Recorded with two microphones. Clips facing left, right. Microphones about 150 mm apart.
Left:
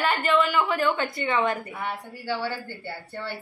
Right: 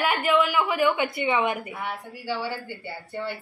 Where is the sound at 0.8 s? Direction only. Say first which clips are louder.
Right 2 dB; 15° right (ahead or behind).